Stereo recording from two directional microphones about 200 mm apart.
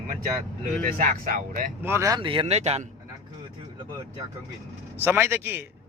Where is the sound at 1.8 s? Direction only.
15° right (ahead or behind); by 2.9 s 35° right (ahead or behind).